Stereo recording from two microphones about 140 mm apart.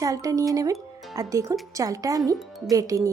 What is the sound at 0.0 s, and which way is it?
Speech, 25° right (ahead or behind).